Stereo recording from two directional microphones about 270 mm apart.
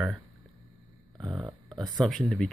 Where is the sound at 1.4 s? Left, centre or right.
Centre.